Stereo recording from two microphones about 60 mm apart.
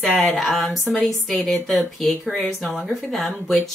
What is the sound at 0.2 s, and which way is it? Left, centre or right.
A woman's voice, centre.